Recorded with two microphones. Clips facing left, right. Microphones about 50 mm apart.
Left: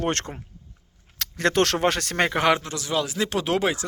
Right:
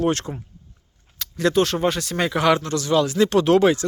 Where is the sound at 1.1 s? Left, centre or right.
Left.